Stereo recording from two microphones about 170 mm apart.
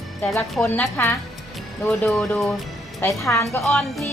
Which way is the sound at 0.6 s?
15° left (ahead or behind).